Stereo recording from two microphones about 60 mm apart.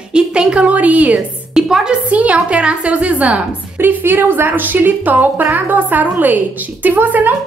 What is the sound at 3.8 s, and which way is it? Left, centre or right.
A woman's voice, right.